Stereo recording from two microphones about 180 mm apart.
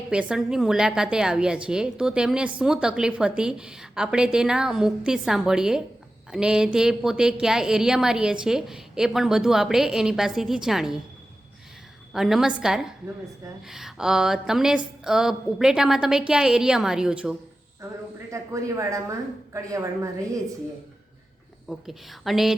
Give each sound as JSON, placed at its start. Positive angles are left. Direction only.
{"t": 0.1, "sound": "a woman's voice", "side_deg": -5}
{"t": 12.1, "sound": "a woman's voice", "side_deg": 0}
{"t": 18.3, "sound": "speech", "side_deg": -15}
{"t": 21.7, "sound": "a woman's voice", "side_deg": 0}